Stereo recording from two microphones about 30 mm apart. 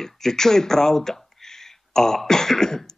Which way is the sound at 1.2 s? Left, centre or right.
Centre.